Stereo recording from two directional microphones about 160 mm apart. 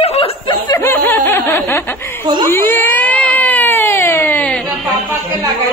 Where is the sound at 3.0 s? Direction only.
10° left (ahead or behind).